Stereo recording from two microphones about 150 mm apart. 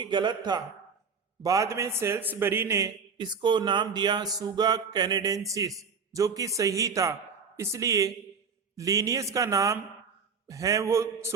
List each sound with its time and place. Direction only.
0.0 s a man's voice: 30° right (ahead or behind)